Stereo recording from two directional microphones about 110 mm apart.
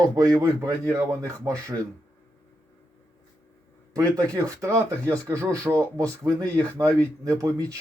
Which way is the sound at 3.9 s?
30° right (ahead or behind).